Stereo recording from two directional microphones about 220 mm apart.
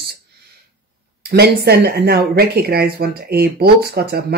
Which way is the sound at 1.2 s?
45° right (ahead or behind).